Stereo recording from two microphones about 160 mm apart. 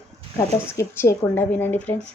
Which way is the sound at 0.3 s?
20° left (ahead or behind).